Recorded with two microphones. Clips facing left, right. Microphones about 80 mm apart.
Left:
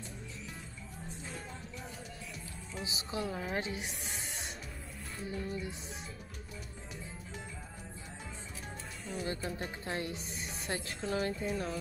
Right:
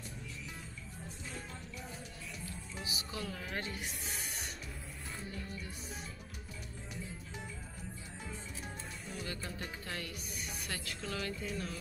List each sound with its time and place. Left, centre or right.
2.8 s speech: left
9.2 s speech: left